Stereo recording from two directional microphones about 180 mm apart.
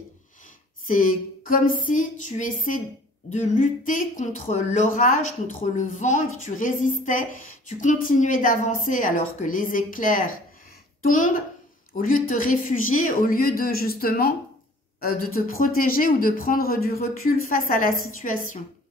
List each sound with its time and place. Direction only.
0.8 s speech: 50° left (ahead or behind)